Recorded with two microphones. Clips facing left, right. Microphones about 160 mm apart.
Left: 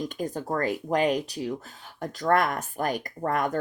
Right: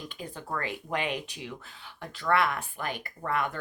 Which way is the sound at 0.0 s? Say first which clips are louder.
Left 10 dB; 40° left (ahead or behind).